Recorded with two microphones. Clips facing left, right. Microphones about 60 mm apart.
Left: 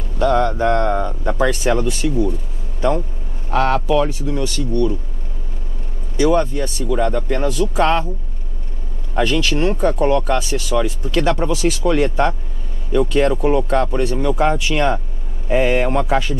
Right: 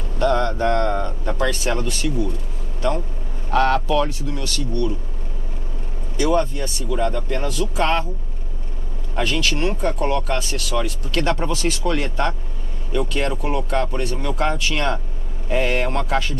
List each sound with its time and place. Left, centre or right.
0.2 s speech: centre
3.4 s speech: centre
6.1 s speech: centre
7.3 s speech: centre
9.1 s speech: centre
9.6 s speech: left
10.0 s speech: centre
13.3 s speech: centre
13.7 s speech: left
14.0 s speech: centre